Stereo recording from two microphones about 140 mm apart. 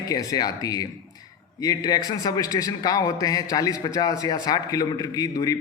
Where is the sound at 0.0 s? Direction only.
25° left (ahead or behind).